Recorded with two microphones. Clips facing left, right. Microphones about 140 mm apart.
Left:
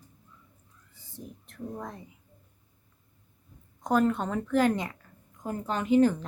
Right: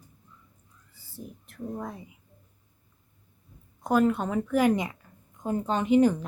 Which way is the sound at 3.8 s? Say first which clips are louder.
Right 2 dB; 5° right (ahead or behind).